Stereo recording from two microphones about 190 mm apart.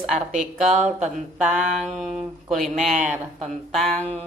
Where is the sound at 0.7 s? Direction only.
40° right (ahead or behind).